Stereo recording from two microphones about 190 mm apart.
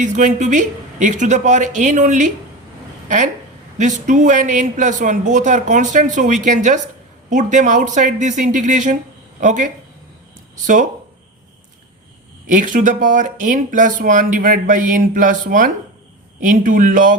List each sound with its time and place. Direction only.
0.0 s a man's voice: 40° right (ahead or behind)
3.8 s a man's voice: 40° right (ahead or behind)
12.5 s speech: 45° right (ahead or behind)